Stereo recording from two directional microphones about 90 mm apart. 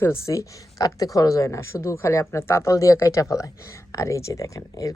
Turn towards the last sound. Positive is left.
turn(degrees=40)  # may be behind; listen again after turning